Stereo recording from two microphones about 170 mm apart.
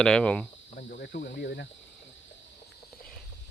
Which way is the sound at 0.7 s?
65° left (ahead or behind).